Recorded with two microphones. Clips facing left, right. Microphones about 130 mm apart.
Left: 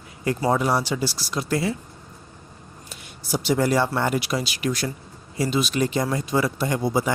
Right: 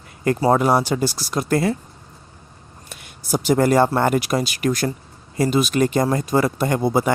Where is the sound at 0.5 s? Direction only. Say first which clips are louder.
Right 5 dB; 50° right (ahead or behind).